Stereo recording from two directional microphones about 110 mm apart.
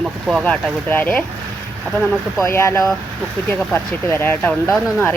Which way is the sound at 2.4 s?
25° left (ahead or behind).